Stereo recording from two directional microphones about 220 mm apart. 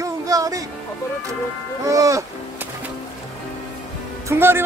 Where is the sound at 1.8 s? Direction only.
15° right (ahead or behind).